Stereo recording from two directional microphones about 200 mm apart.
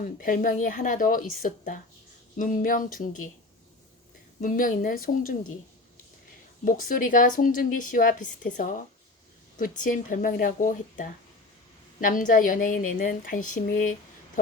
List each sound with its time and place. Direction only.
0.0 s a woman's voice: 45° left (ahead or behind)
4.4 s a woman's voice: 40° left (ahead or behind)
6.7 s a woman's voice: 45° left (ahead or behind)